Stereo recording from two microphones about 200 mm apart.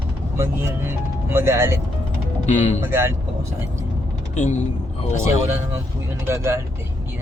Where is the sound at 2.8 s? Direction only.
10° right (ahead or behind).